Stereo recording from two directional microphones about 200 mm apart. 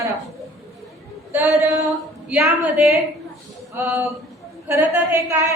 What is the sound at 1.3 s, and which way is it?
A woman's voice, 15° right (ahead or behind).